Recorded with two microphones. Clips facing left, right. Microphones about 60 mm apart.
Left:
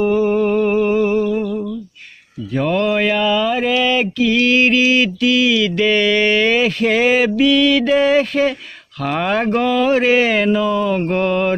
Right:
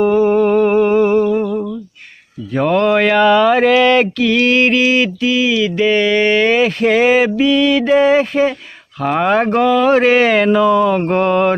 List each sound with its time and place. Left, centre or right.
0.0 s humming: right
2.5 s speech: right
3.8 s mantra: right
4.2 s mantra: right
11.0 s mantra: right